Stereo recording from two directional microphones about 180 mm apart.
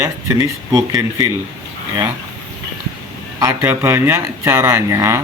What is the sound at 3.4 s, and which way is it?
Speech, 15° right (ahead or behind).